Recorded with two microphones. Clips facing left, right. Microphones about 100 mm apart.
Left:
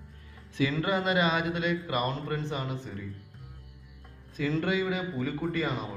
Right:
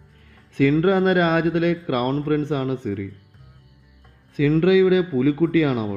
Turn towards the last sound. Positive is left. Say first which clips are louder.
# right 12 dB
turn(degrees=-70)  # may be behind; listen again after turning